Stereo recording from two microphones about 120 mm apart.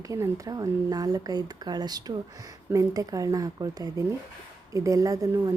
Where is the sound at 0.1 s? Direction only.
30° right (ahead or behind).